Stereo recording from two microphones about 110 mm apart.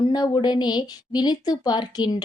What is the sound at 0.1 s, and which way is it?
A woman's voice, 40° left (ahead or behind).